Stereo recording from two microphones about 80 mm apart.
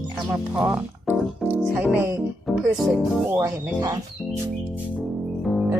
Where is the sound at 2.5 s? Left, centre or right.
Centre.